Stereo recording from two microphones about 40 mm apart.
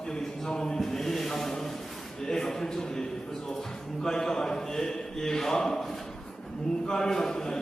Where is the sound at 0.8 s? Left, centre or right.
Centre.